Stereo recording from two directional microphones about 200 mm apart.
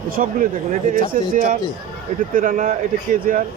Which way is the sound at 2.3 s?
40° right (ahead or behind).